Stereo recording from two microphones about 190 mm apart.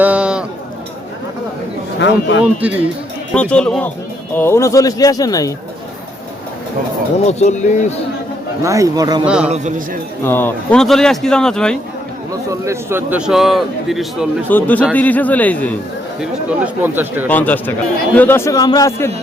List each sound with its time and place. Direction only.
0.0 s a sound: 5° right (ahead or behind)
2.0 s a man's voice: 70° left (ahead or behind)
2.4 s speech: 10° right (ahead or behind)
3.3 s a man's voice: 5° left (ahead or behind)
7.3 s speech: 35° left (ahead or behind)
8.6 s speech: 15° right (ahead or behind)
9.2 s a man's voice: 5° right (ahead or behind)
9.5 s a man's voice: 40° right (ahead or behind)
10.2 s a man's voice: 10° left (ahead or behind)
12.5 s a man's voice: 15° right (ahead or behind); by 15.7 s 10° left (ahead or behind)
16.2 s speech: 5° right (ahead or behind)
17.2 s a man's voice: 10° left (ahead or behind)